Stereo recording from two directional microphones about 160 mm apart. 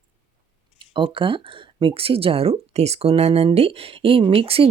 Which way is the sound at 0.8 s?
30° right (ahead or behind).